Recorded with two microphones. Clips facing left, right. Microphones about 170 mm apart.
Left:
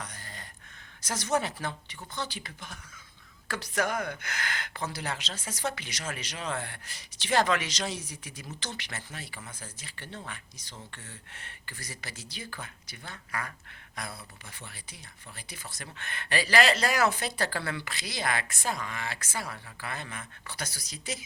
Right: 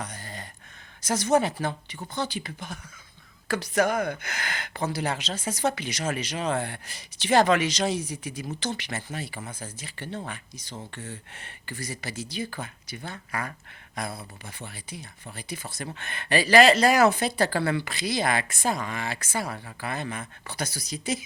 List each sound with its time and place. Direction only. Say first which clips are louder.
0.0 s gasp: right 6 dB; 15° right (ahead or behind)
1.0 s speech: right 7 dB; 15° right (ahead or behind)
3.8 s speech: right 6 dB; 60° right (ahead or behind)
4.2 s speech: right 2 dB; 10° right (ahead or behind)
15.4 s speech: right 9 dB; 15° right (ahead or behind)